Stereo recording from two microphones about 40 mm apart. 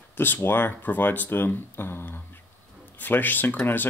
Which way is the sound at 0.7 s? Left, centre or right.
Left.